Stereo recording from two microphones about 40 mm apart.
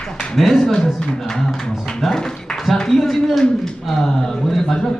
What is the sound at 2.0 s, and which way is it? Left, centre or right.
A man's voice, centre.